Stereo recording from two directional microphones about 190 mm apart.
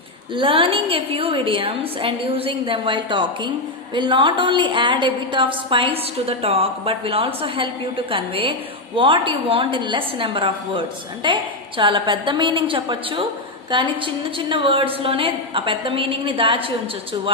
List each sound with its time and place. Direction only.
0.3 s a woman's voice: 30° right (ahead or behind)